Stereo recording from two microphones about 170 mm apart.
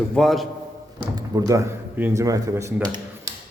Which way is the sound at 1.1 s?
20° right (ahead or behind).